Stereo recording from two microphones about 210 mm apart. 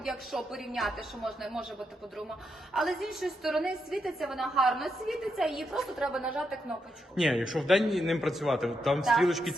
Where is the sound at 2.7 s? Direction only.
Centre (ahead or behind).